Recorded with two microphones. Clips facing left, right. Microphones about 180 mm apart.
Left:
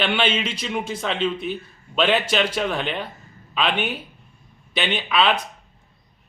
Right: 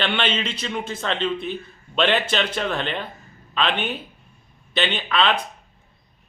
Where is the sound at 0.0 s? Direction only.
5° left (ahead or behind).